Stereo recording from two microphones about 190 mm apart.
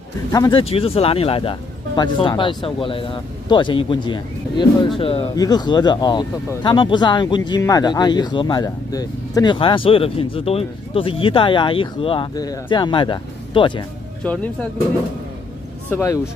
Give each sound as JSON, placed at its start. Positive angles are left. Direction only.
{"t": 0.3, "sound": "speech", "side_deg": 25}
{"t": 14.2, "sound": "speech", "side_deg": 5}
{"t": 15.9, "sound": "speech", "side_deg": 15}